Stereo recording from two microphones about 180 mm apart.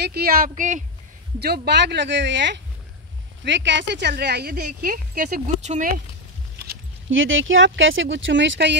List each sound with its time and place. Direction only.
0.0 s speech: 60° right (ahead or behind)
1.4 s speech: 60° right (ahead or behind)
6.6 s speech: 75° right (ahead or behind)